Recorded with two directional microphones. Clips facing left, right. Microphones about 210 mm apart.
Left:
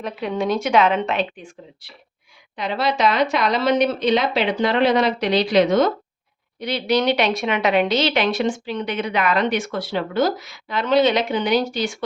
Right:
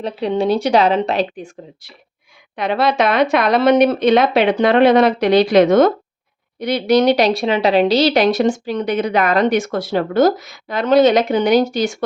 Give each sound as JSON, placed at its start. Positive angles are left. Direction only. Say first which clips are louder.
{"t": 0.0, "sound": "speech", "louder": "right 5 dB", "side_deg": -30}
{"t": 2.6, "sound": "a woman's voice", "louder": "right 5 dB", "side_deg": -55}